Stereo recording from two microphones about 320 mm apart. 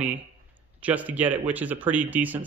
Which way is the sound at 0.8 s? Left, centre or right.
Centre.